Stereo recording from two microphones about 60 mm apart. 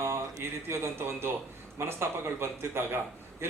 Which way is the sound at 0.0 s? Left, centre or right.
Right.